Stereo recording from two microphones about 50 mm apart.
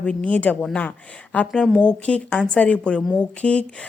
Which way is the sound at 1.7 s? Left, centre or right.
Centre.